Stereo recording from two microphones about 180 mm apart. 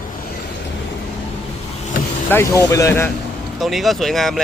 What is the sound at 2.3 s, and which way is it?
Speech, 15° left (ahead or behind).